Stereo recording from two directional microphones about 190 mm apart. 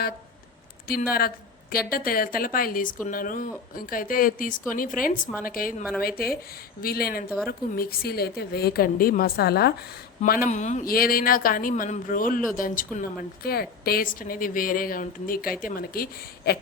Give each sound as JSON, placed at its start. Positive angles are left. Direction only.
{"t": 1.9, "sound": "a woman's voice", "side_deg": 50}